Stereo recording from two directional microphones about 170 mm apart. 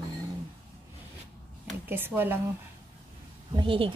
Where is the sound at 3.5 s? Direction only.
30° right (ahead or behind).